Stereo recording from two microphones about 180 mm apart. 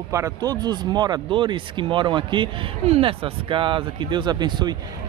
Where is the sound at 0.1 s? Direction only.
20° right (ahead or behind).